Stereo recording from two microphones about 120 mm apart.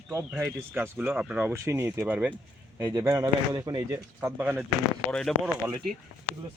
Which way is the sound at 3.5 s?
35° right (ahead or behind).